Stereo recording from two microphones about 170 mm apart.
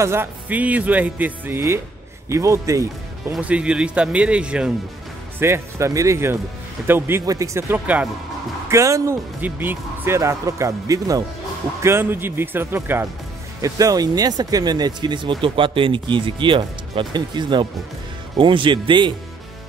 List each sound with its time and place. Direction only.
0.0 s speech: 15° right (ahead or behind)
3.3 s speech: 5° right (ahead or behind); by 19.1 s 30° right (ahead or behind)